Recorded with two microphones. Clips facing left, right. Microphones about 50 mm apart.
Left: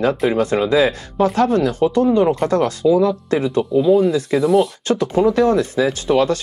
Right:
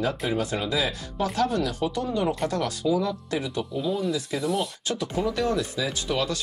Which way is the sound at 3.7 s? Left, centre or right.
Left.